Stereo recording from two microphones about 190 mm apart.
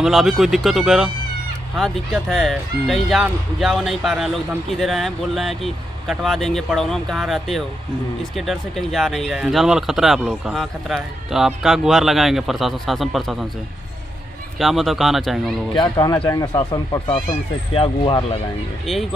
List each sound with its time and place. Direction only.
0.0 s speech: centre (ahead or behind)
14.6 s speech: centre (ahead or behind)
15.7 s speech: 20° left (ahead or behind)